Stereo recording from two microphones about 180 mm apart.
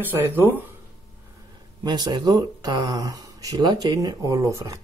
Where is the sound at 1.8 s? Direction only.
25° right (ahead or behind).